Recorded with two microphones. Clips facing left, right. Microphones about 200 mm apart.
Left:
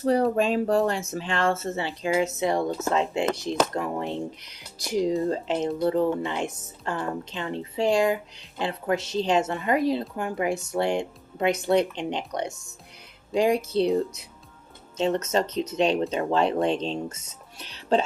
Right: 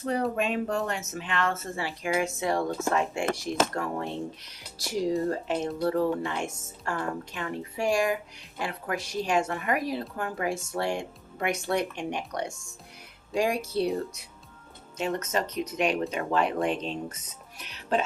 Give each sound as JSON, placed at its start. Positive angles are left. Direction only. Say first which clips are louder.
{"t": 0.0, "sound": "speech", "louder": "left 6 dB", "side_deg": 35}